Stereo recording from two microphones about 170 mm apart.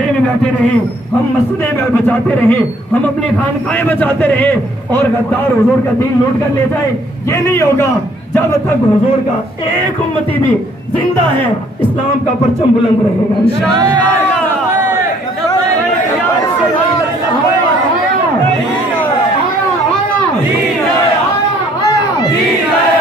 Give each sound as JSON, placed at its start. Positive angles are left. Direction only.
{"t": 2.0, "sound": "a man's voice", "side_deg": 10}
{"t": 4.0, "sound": "a man's voice", "side_deg": 10}
{"t": 7.4, "sound": "a man's voice", "side_deg": 15}